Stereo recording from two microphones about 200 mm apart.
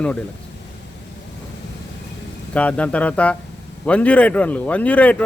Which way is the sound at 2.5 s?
5° left (ahead or behind).